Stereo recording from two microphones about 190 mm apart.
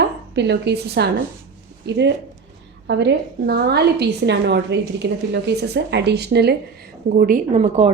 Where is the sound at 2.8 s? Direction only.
65° right (ahead or behind).